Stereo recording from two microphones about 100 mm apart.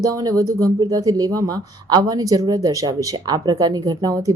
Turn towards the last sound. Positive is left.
turn(degrees=-40)  # may be behind; listen again after turning